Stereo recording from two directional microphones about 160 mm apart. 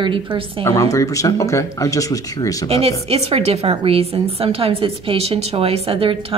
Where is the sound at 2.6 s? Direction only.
40° right (ahead or behind).